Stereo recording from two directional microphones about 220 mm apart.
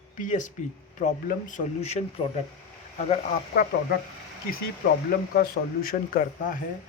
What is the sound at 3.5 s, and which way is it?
Speech, 40° left (ahead or behind).